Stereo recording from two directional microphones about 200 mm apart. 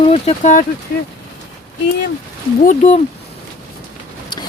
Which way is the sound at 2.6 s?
35° left (ahead or behind).